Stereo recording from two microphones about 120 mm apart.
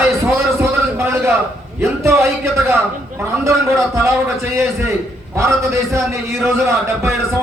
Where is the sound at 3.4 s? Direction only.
25° right (ahead or behind).